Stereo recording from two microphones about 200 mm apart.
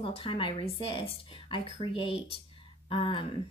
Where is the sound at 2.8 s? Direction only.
25° left (ahead or behind).